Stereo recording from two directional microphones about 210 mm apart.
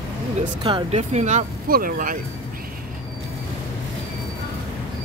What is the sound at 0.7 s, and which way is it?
Speech, 25° right (ahead or behind).